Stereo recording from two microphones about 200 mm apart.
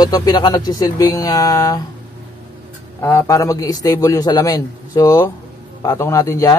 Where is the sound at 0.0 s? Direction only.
20° left (ahead or behind).